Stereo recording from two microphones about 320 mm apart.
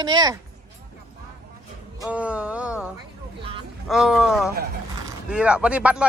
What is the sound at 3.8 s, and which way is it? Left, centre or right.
Speech, centre.